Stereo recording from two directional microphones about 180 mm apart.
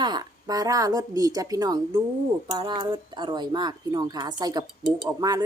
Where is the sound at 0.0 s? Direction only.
25° right (ahead or behind).